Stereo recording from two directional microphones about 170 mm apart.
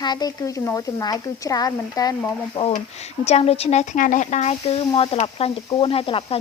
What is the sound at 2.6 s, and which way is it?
Speech, 30° left (ahead or behind).